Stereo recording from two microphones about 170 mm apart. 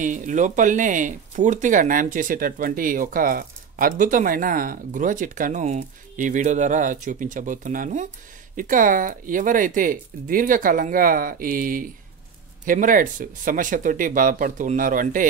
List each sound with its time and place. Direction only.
0.0 s speech: 50° right (ahead or behind)